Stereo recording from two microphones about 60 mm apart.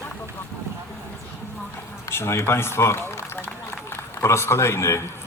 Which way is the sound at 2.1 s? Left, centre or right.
Left.